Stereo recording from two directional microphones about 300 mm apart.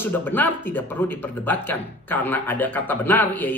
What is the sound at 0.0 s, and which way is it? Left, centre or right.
Speech, centre.